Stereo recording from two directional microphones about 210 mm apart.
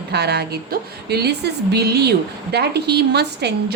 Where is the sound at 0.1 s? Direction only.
50° right (ahead or behind).